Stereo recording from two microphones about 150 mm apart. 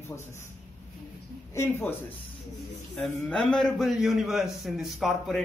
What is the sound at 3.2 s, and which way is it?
A man's voice, 5° left (ahead or behind).